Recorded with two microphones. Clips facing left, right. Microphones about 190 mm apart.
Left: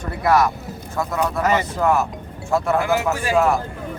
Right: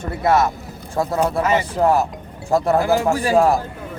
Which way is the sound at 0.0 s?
25° right (ahead or behind).